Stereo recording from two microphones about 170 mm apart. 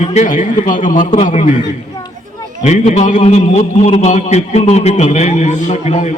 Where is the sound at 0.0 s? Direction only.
45° left (ahead or behind).